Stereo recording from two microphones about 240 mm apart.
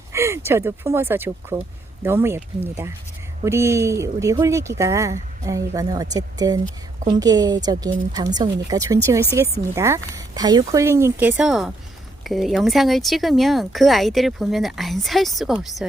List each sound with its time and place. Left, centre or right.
0.1 s speech: centre